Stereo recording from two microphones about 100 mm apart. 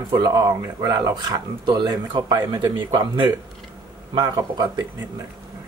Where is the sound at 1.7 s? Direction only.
45° right (ahead or behind).